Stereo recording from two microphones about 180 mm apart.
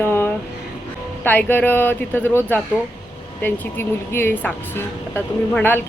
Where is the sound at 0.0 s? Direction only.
10° left (ahead or behind).